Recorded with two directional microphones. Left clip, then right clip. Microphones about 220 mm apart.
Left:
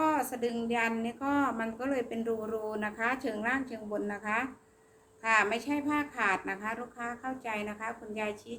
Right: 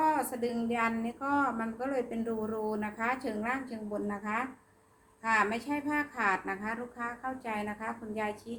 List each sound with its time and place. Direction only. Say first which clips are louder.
0.0 s a woman's voice: even; 15° left (ahead or behind)